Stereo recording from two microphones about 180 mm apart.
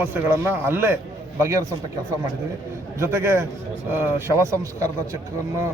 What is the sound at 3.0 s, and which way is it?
A man's voice, 15° right (ahead or behind).